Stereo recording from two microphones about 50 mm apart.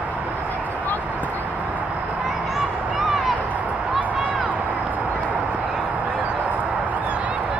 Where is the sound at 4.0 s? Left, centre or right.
Right.